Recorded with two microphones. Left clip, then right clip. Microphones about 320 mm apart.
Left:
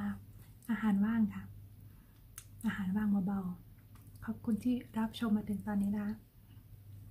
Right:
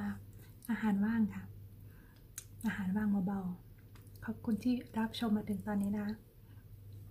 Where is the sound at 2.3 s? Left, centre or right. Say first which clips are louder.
Even; centre.